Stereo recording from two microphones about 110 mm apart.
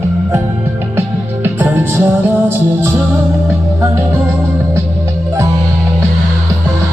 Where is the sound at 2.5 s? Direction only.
20° right (ahead or behind).